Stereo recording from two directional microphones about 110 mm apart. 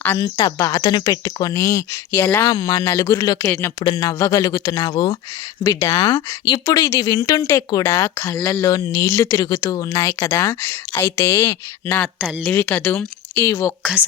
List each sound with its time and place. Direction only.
0.2 s speech: 35° left (ahead or behind)
3.5 s speech: 20° left (ahead or behind)
3.8 s speech: 35° left (ahead or behind)
5.6 s speech: 25° left (ahead or behind)
6.4 s speech: 40° left (ahead or behind); by 13.7 s 25° left (ahead or behind)